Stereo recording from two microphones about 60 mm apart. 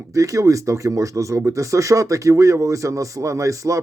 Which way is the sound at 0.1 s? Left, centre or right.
Right.